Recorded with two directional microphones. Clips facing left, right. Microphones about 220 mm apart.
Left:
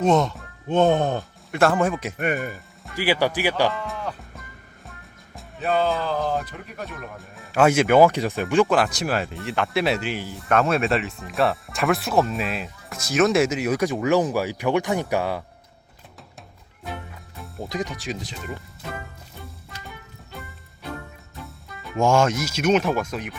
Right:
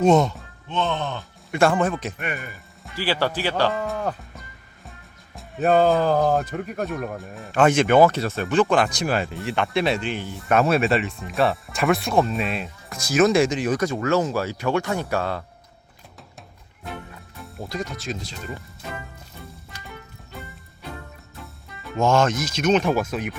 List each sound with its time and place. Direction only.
0.0 s speech: centre (ahead or behind)
0.7 s speech: 50° left (ahead or behind)
1.5 s speech: centre (ahead or behind)
2.1 s speech: 45° left (ahead or behind)
2.9 s speech: 15° left (ahead or behind)
4.9 s music: centre (ahead or behind)
5.5 s speech: 45° right (ahead or behind)
7.2 s speech: centre (ahead or behind)
8.6 s speech: 5° left (ahead or behind)
17.7 s speech: 15° left (ahead or behind)
21.9 s speech: 10° left (ahead or behind); by 23.3 s 5° right (ahead or behind)